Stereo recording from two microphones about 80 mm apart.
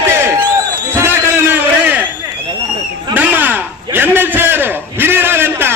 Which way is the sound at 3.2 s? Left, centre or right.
Right.